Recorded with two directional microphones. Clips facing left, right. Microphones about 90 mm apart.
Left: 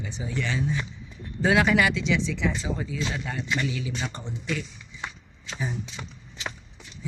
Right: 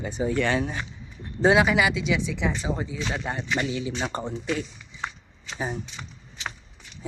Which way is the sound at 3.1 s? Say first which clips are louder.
Right 2 dB; 35° right (ahead or behind).